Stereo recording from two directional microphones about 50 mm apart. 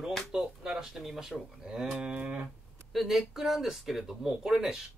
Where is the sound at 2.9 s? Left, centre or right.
Centre.